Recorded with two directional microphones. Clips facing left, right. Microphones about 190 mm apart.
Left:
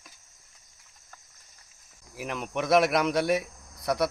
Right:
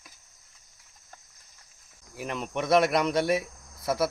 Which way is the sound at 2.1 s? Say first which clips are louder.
Even; centre (ahead or behind).